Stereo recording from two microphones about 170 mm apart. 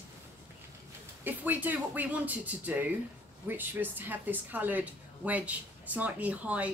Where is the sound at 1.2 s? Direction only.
10° right (ahead or behind).